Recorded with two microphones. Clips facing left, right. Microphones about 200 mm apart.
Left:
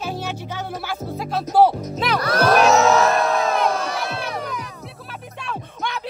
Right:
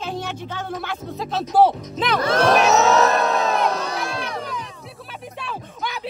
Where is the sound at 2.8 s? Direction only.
40° right (ahead or behind).